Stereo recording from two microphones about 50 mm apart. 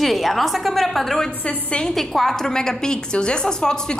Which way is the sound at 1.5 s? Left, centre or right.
Left.